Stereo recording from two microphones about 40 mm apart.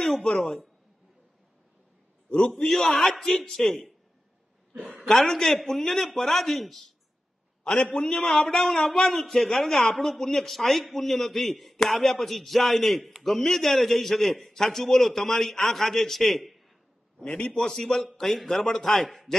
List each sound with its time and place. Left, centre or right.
0.2 s speech: left
2.2 s a man's voice: left
2.6 s a man's voice: centre
5.0 s a man's voice: centre
7.6 s a man's voice: left; by 19.3 s centre